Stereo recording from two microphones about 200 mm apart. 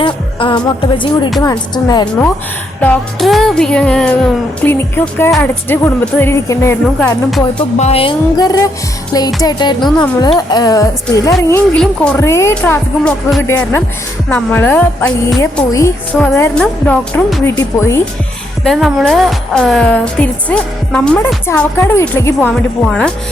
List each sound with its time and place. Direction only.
0.0 s speech: 25° left (ahead or behind)
2.8 s a woman's voice: 5° left (ahead or behind)
7.8 s speech: 30° left (ahead or behind); by 17.4 s 5° left (ahead or behind)
17.4 s speech: 15° left (ahead or behind)
18.6 s a woman's voice: centre (ahead or behind)